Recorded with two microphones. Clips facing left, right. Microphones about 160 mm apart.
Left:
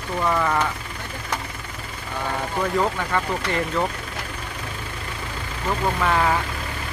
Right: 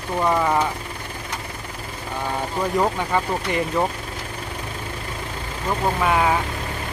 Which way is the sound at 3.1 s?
15° right (ahead or behind).